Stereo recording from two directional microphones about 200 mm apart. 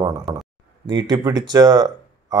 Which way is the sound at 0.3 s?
15° right (ahead or behind).